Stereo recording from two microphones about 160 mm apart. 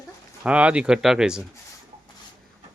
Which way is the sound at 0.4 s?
10° right (ahead or behind).